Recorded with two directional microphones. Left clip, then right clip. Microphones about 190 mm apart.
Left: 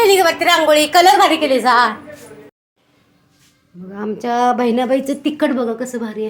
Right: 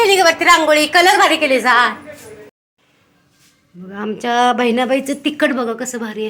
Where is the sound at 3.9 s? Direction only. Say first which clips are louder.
Right 2 dB; centre (ahead or behind).